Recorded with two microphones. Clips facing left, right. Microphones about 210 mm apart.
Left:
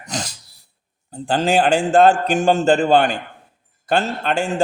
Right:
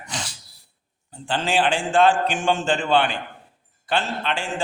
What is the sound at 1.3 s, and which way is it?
A man's voice, 40° left (ahead or behind).